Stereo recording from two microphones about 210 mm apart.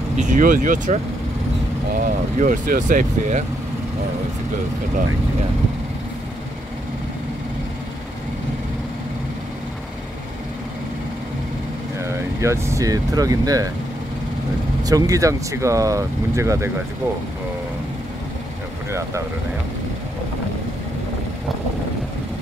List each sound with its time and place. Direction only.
0.2 s speech: 40° right (ahead or behind)
2.0 s speech: 40° right (ahead or behind)
12.1 s speech: 15° right (ahead or behind)
14.8 s speech: 15° right (ahead or behind)
18.9 s speech: 15° right (ahead or behind)